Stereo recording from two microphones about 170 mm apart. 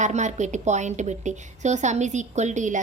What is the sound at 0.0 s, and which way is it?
A woman's voice, 45° right (ahead or behind).